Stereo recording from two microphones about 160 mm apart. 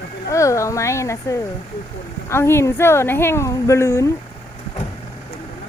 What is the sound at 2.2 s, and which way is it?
A woman's voice, 15° left (ahead or behind).